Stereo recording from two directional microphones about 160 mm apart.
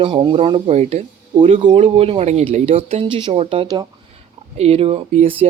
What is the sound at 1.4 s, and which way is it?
Speech, 30° right (ahead or behind).